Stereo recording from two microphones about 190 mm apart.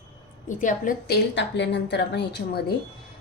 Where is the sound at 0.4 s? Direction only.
45° left (ahead or behind).